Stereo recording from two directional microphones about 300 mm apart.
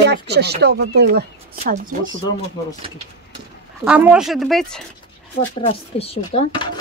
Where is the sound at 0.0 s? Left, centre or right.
Right.